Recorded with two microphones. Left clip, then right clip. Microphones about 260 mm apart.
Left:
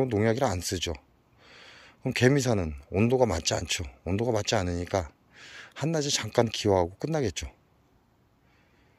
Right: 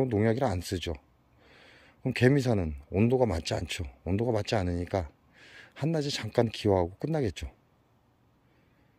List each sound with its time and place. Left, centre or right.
0.0 s speech: centre